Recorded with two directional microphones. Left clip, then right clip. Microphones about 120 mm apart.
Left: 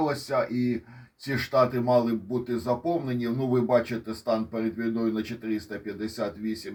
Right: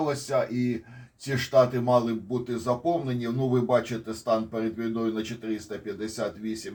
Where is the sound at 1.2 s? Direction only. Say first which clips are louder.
Right 2 dB; 30° left (ahead or behind).